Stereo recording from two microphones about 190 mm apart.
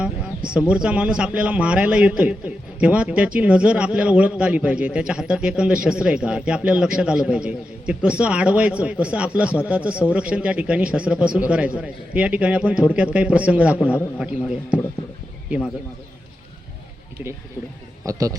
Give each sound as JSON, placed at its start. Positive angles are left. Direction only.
{"t": 0.0, "sound": "a sound", "side_deg": -5}
{"t": 0.7, "sound": "a man's voice", "side_deg": -5}
{"t": 18.0, "sound": "a man's voice", "side_deg": -15}